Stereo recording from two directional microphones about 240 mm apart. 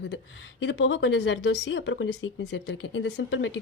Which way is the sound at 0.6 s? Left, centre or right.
Left.